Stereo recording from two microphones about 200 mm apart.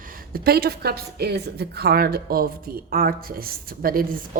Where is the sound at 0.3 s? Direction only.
50° right (ahead or behind).